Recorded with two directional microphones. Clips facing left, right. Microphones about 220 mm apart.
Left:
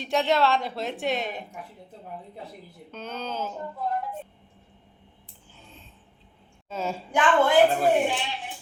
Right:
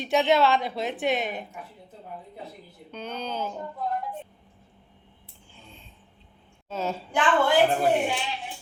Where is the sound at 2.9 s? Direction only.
5° left (ahead or behind).